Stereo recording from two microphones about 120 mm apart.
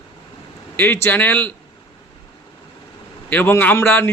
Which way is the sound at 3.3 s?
15° left (ahead or behind).